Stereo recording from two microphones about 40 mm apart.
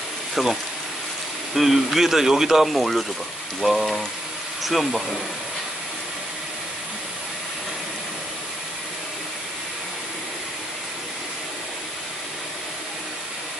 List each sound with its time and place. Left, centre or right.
0.3 s speech: centre